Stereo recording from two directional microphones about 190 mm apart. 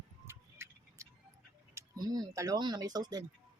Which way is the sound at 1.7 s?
20° right (ahead or behind).